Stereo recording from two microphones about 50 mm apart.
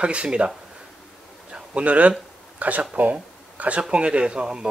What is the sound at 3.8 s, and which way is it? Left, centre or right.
Speech, right.